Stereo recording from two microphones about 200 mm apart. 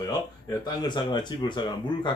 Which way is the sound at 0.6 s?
20° left (ahead or behind).